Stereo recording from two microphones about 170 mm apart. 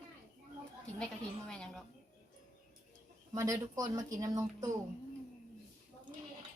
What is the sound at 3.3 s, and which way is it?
Speech, 20° right (ahead or behind).